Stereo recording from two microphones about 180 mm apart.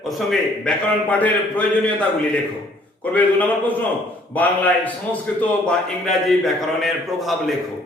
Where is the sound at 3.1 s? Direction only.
10° left (ahead or behind).